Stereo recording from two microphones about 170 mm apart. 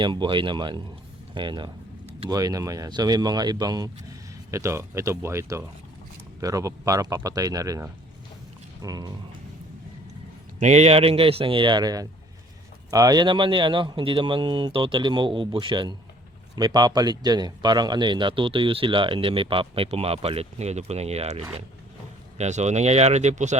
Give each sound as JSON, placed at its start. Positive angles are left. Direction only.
{"t": 0.0, "sound": "speech", "side_deg": -30}
{"t": 10.6, "sound": "a man's voice", "side_deg": -40}